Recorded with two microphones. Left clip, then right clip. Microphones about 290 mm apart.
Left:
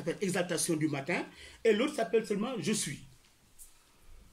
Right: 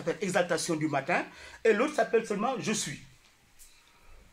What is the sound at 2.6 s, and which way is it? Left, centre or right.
Speech, centre.